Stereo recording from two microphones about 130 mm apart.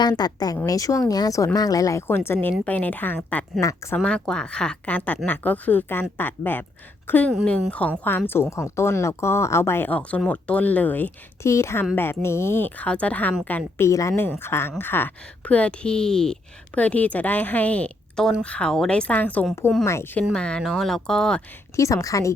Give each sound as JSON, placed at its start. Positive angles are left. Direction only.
{"t": 0.0, "sound": "a woman's voice", "side_deg": 30}
{"t": 3.6, "sound": "speech", "side_deg": 25}
{"t": 3.9, "sound": "a woman's voice", "side_deg": 10}
{"t": 8.3, "sound": "a woman's voice", "side_deg": 20}
{"t": 20.3, "sound": "speech", "side_deg": 5}
{"t": 21.8, "sound": "speech", "side_deg": 25}